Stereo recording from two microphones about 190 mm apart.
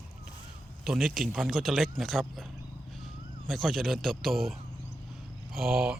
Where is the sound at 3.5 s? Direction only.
Centre (ahead or behind).